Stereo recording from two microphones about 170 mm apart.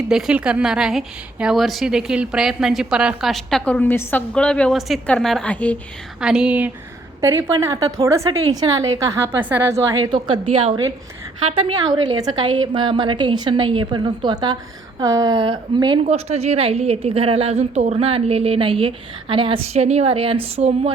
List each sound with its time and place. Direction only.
0.1 s a woman's voice: 5° right (ahead or behind)
6.1 s a woman's voice: 5° right (ahead or behind); by 16.0 s 25° right (ahead or behind)
16.0 s a woman's voice: 40° right (ahead or behind)